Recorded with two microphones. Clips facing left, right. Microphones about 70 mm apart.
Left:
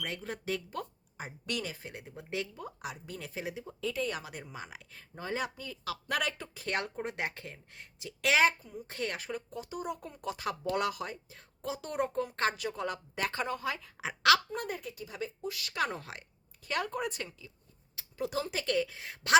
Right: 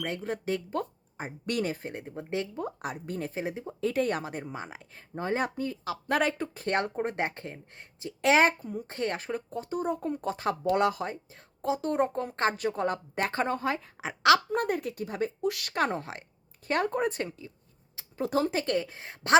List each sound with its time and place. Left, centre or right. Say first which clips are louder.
0.0 s speech: right 6 dB; right
3.9 s speech: right 7 dB; right
8.9 s speech: right 4 dB; right
14.0 s speech: right 4 dB; right
14.5 s speech: right 9 dB; right
15.4 s speech: right 9 dB; right
15.7 s speech: right 1 dB; right